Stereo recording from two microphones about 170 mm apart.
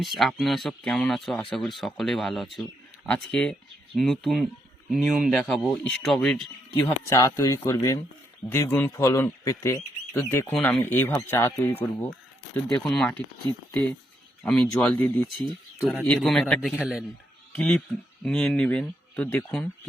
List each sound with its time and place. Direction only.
0.0 s speech: centre (ahead or behind)
7.1 s speech: 20° left (ahead or behind); by 13.1 s centre (ahead or behind)
14.4 s speech: 5° left (ahead or behind)
17.5 s speech: 10° left (ahead or behind)